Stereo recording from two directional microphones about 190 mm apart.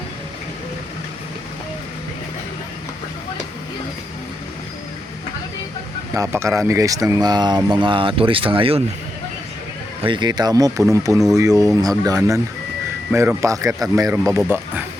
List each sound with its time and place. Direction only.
6.1 s speech: 15° right (ahead or behind)
10.0 s a man's voice: 25° right (ahead or behind); by 14.8 s 10° right (ahead or behind)